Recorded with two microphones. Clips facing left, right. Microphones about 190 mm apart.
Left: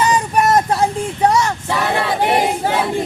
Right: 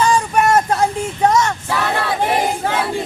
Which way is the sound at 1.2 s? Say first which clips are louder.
Even; 10° left (ahead or behind).